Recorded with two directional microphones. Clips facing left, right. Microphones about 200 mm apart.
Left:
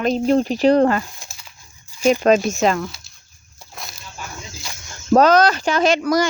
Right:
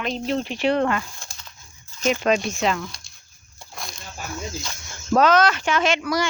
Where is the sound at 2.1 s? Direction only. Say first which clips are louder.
Left 6 dB; 40° left (ahead or behind).